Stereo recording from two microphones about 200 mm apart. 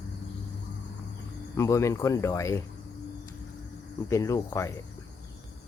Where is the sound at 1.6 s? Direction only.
15° left (ahead or behind).